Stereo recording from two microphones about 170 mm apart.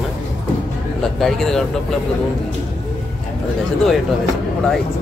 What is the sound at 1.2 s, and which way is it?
Speech, centre (ahead or behind).